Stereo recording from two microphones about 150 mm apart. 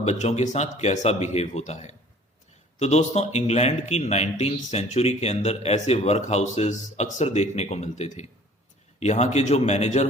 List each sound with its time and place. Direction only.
0.0 s speech: 45° left (ahead or behind)